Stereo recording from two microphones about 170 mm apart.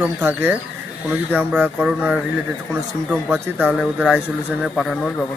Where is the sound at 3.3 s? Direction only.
5° right (ahead or behind).